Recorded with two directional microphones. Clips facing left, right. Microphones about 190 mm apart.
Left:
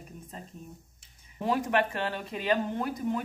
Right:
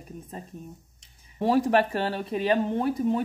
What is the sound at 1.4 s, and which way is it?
Speech, 35° right (ahead or behind).